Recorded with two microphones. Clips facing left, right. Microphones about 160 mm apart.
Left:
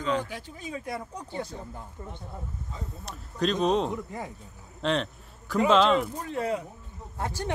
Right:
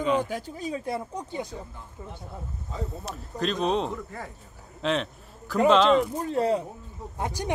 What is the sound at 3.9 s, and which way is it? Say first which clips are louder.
Speech: left 2 dB; 15° left (ahead or behind).